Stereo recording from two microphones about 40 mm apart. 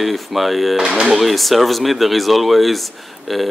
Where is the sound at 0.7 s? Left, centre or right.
Centre.